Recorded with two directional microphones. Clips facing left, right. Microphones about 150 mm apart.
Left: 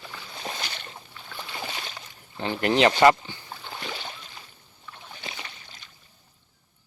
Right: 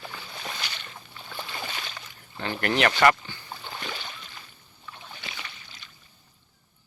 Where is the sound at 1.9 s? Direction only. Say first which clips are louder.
Left 2 dB; 20° left (ahead or behind).